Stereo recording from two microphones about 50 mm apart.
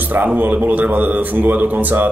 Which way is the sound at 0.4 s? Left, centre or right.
Right.